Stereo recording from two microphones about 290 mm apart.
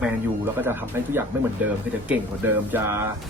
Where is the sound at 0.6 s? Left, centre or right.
Centre.